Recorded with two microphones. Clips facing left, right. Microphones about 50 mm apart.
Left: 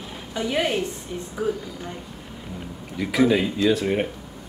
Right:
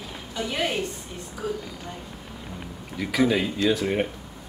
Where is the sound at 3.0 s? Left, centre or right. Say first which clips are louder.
Left 3 dB; centre.